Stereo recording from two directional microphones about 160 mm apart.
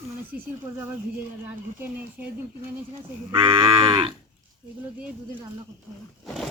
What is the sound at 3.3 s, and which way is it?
Moo, 35° right (ahead or behind).